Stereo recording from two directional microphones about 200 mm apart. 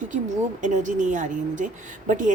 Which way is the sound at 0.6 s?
40° right (ahead or behind).